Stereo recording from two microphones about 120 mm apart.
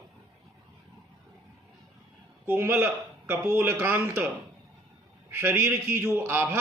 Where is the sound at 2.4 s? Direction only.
20° right (ahead or behind).